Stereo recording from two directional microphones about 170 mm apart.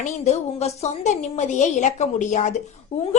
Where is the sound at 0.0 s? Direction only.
40° left (ahead or behind).